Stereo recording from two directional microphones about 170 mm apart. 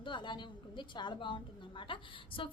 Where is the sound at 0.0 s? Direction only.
30° left (ahead or behind).